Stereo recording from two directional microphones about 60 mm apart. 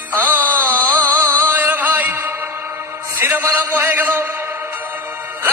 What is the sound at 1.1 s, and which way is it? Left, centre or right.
Music, right.